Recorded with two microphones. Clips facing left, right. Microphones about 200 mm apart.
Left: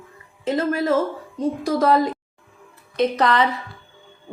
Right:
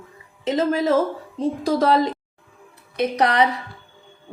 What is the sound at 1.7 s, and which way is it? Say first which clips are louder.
Speech: left 1 dB; 25° right (ahead or behind).